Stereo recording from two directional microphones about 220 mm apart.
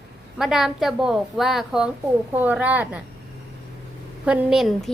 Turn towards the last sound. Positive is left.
turn(degrees=0)  # may be behind; listen again after turning